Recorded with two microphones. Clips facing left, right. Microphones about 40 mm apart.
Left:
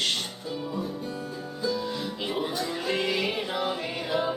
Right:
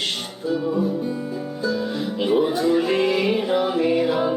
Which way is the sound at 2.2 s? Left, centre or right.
Centre.